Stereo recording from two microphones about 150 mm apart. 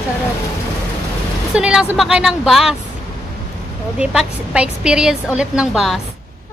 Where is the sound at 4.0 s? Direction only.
5° right (ahead or behind).